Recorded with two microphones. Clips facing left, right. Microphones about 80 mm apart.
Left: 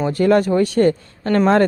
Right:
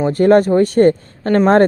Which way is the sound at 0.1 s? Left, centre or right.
Right.